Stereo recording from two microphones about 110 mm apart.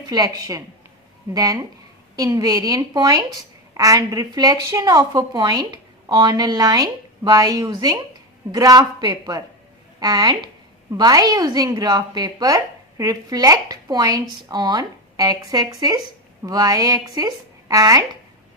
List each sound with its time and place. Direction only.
0.1 s a woman's voice: 35° right (ahead or behind)